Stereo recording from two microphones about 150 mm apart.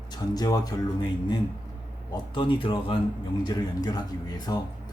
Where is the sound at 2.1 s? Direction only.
30° left (ahead or behind).